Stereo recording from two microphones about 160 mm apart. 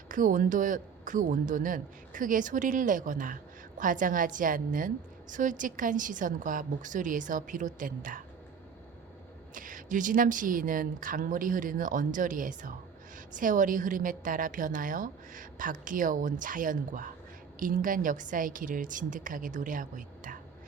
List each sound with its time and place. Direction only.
0.1 s a woman's voice: 55° right (ahead or behind)
9.6 s a woman's voice: 55° right (ahead or behind)